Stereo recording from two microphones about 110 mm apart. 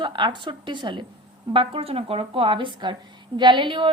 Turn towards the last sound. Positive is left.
turn(degrees=-50)  # may be behind; listen again after turning